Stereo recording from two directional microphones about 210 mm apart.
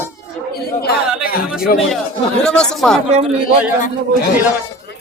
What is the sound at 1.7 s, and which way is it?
Speech, 40° left (ahead or behind).